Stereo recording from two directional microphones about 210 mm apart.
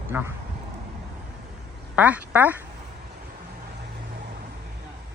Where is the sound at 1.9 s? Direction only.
5° right (ahead or behind).